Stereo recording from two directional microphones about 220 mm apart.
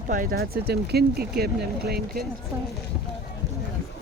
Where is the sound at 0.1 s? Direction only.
40° right (ahead or behind).